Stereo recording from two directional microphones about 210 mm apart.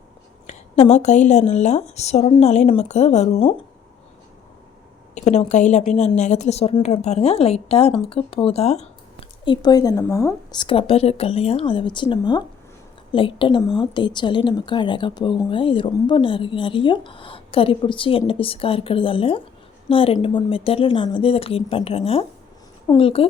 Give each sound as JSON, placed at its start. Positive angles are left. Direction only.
{"t": 0.4, "sound": "speech", "side_deg": 30}
{"t": 5.1, "sound": "speech", "side_deg": 30}